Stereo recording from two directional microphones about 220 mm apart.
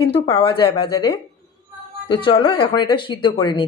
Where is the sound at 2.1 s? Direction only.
20° left (ahead or behind).